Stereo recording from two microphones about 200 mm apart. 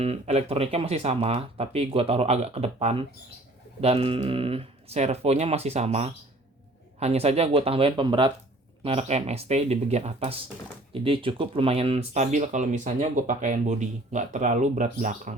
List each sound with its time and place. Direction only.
0.0 s speech: 30° right (ahead or behind)